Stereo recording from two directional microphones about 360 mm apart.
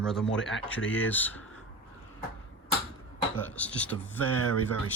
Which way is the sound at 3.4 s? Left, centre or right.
Centre.